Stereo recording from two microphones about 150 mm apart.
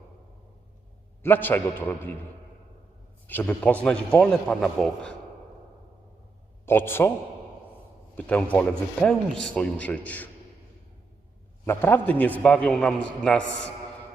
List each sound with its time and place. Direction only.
1.2 s a man's voice: 15° left (ahead or behind)
3.2 s a man's voice: 10° left (ahead or behind)
6.7 s a man's voice: 15° left (ahead or behind)
8.1 s a man's voice: 10° left (ahead or behind)
11.6 s a man's voice: 15° left (ahead or behind)